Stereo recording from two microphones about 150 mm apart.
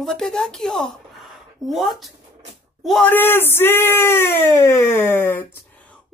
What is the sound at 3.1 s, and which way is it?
A child's voice, 15° left (ahead or behind).